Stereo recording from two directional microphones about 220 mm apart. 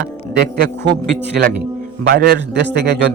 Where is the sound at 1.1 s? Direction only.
50° right (ahead or behind).